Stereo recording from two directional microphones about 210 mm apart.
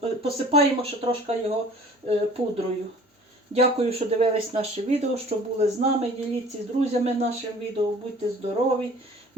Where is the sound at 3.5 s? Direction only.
30° right (ahead or behind).